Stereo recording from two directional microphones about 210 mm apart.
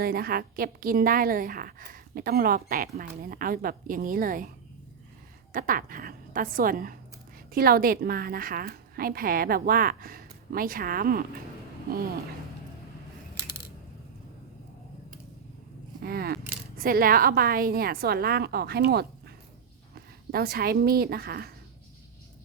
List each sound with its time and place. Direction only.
0.0 s a woman's voice: 45° right (ahead or behind)
16.0 s a woman's voice: 45° right (ahead or behind)
20.3 s a woman's voice: 45° right (ahead or behind)